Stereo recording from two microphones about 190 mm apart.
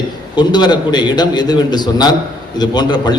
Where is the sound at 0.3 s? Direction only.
20° left (ahead or behind).